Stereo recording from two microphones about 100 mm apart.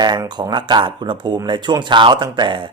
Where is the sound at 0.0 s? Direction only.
45° right (ahead or behind).